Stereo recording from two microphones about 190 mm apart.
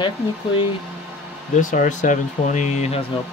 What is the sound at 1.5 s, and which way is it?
Speech, 40° left (ahead or behind).